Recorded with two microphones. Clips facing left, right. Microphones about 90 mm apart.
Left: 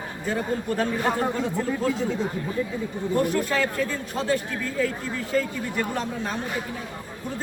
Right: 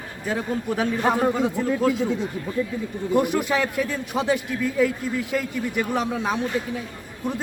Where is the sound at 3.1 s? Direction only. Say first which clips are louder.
Right 3 dB; 15° right (ahead or behind).